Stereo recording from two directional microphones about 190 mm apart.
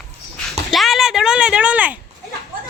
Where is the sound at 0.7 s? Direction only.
Centre (ahead or behind).